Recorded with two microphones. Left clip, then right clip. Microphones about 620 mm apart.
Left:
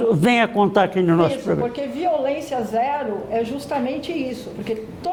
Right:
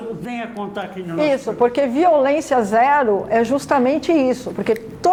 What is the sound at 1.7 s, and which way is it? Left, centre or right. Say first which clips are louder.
A woman's voice: right 7 dB; right.